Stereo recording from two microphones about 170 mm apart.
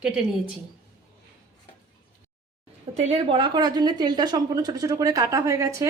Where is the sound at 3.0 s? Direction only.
35° right (ahead or behind).